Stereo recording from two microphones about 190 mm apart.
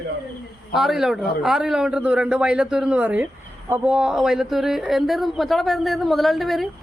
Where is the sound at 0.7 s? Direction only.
Centre (ahead or behind).